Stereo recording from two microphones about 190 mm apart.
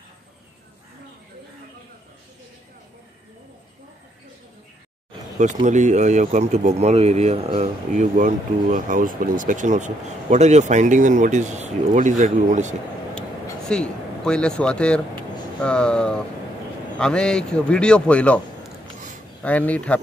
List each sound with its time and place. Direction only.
5.4 s speech: 40° right (ahead or behind)
13.7 s speech: 5° left (ahead or behind)
19.4 s speech: 5° left (ahead or behind)